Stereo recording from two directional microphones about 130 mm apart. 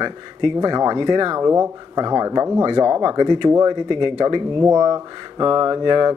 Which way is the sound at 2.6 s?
40° right (ahead or behind).